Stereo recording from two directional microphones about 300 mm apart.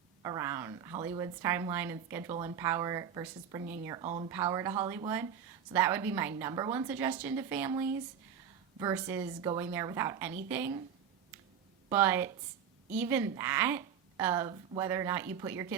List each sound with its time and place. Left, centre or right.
0.2 s a woman's voice: centre
4.0 s speech: right
4.3 s a woman's voice: centre
11.9 s a woman's voice: centre